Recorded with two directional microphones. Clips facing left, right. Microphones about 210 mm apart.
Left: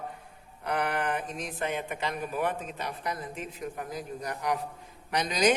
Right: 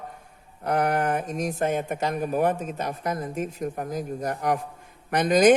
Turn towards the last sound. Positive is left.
turn(degrees=-50)  # may be behind; listen again after turning